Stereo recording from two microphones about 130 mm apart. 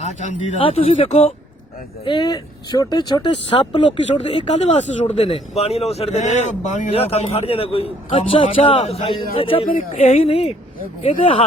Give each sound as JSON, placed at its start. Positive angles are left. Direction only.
{"t": 0.0, "sound": "speech", "side_deg": 65}
{"t": 0.6, "sound": "speech", "side_deg": 50}
{"t": 2.0, "sound": "speech", "side_deg": 35}
{"t": 4.2, "sound": "speech", "side_deg": 55}
{"t": 9.6, "sound": "speech", "side_deg": 75}